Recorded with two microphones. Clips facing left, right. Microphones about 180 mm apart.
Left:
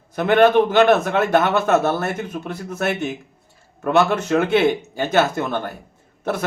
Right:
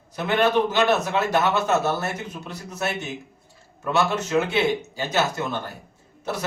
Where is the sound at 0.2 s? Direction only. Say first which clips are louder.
Left 6 dB; 55° left (ahead or behind).